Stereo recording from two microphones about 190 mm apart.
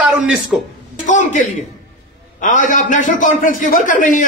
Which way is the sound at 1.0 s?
40° left (ahead or behind).